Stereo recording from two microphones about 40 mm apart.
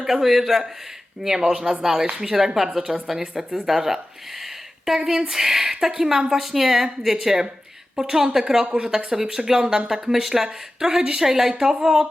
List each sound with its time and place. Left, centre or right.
0.0 s speech: centre